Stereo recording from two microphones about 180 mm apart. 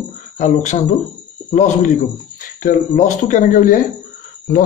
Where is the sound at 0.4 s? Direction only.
40° left (ahead or behind).